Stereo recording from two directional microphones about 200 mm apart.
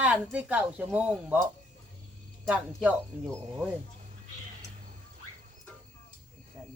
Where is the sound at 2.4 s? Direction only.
5° right (ahead or behind).